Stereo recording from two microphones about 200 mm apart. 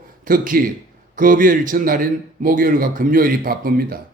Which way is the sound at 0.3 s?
45° right (ahead or behind).